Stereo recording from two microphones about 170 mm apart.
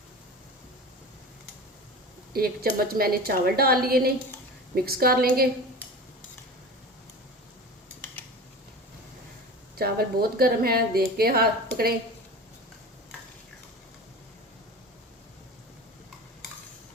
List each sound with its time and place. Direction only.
2.3 s a woman's voice: 65° right (ahead or behind)
9.7 s a woman's voice: 65° right (ahead or behind)